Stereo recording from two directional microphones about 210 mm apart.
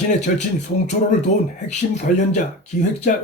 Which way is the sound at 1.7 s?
35° left (ahead or behind).